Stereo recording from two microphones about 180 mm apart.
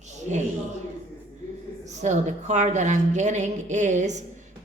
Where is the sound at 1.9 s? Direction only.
40° right (ahead or behind).